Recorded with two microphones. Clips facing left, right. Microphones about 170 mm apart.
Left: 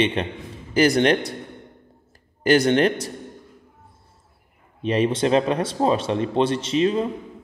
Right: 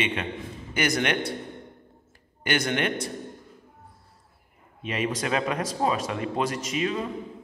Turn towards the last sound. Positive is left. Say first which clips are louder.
# left 7 dB
turn(degrees=30)  # may be behind; listen again after turning